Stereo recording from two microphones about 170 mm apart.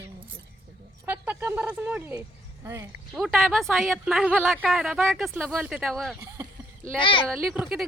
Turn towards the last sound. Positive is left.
turn(degrees=-5)  # may be behind; listen again after turning